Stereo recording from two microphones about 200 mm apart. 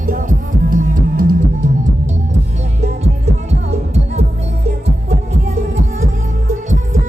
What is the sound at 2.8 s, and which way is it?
Heart sounds, 35° right (ahead or behind).